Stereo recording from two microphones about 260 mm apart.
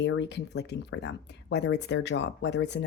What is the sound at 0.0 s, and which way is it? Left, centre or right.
Speech, left.